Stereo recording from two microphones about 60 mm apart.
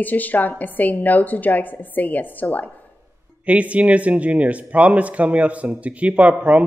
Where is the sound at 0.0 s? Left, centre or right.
Left.